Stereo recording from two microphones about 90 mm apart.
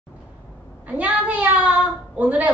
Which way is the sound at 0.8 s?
15° right (ahead or behind).